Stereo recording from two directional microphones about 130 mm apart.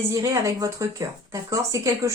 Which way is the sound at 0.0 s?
25° right (ahead or behind).